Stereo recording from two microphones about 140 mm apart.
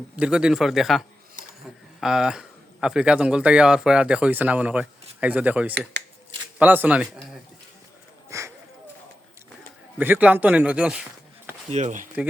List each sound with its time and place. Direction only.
0.2 s speech: 5° right (ahead or behind)
8.3 s a sound: 20° right (ahead or behind)
10.0 s speech: 10° right (ahead or behind)
11.7 s speech: 60° right (ahead or behind)